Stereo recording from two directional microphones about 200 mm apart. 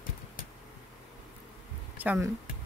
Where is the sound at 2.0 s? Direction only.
10° right (ahead or behind).